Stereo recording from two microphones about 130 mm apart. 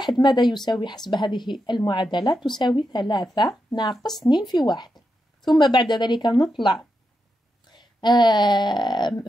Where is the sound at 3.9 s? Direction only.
Centre (ahead or behind).